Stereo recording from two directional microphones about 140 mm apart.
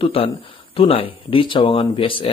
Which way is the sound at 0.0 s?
40° left (ahead or behind).